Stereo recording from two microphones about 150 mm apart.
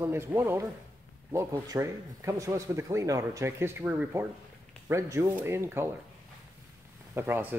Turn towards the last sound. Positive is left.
turn(degrees=-15)  # may be behind; listen again after turning